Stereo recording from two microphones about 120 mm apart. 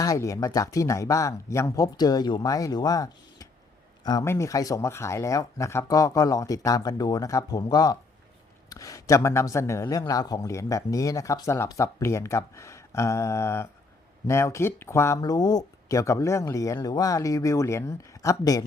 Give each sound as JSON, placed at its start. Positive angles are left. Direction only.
{"t": 0.0, "sound": "speech", "side_deg": 30}
{"t": 15.2, "sound": "speech", "side_deg": 35}